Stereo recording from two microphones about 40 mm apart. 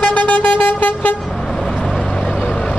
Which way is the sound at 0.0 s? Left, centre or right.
Left.